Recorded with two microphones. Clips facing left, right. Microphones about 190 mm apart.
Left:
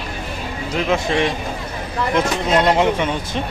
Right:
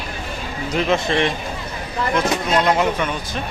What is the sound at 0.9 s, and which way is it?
Speech, 5° left (ahead or behind).